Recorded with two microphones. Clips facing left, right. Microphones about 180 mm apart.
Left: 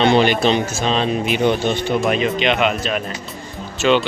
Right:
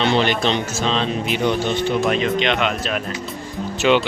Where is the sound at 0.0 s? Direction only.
15° left (ahead or behind).